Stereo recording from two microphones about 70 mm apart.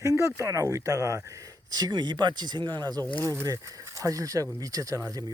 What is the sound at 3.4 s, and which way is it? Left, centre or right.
Speech, right.